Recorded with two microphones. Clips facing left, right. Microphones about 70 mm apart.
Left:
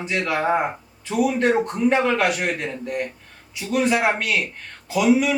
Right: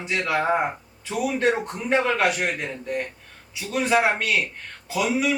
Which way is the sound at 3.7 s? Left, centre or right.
Centre.